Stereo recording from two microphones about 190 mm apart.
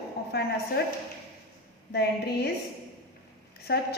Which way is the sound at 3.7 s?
60° left (ahead or behind).